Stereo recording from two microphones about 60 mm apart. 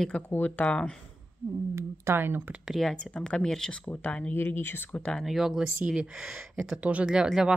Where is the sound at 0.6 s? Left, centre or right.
Centre.